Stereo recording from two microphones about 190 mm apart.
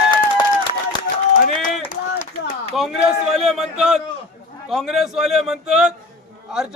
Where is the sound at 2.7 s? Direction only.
Centre (ahead or behind).